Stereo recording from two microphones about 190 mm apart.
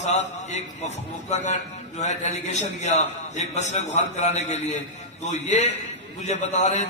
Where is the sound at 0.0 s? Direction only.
35° left (ahead or behind).